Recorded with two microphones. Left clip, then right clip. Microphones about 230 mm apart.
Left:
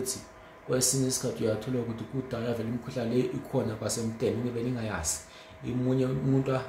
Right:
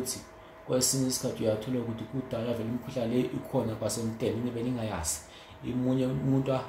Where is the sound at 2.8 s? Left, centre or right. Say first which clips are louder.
Left 1 dB; centre.